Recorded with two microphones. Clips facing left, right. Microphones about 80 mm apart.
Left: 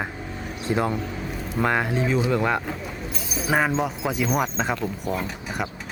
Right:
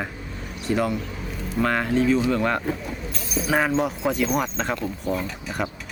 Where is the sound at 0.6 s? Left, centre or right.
Left.